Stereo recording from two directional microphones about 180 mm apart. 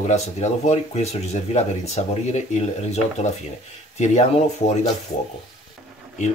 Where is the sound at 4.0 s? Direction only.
40° left (ahead or behind).